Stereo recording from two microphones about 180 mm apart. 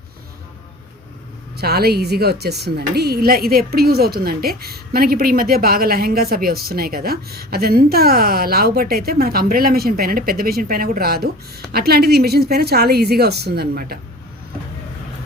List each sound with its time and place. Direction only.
1.5 s a woman's voice: 60° right (ahead or behind)